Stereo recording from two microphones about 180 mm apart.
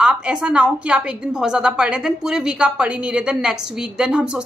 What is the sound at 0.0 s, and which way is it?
A woman's voice, 5° right (ahead or behind).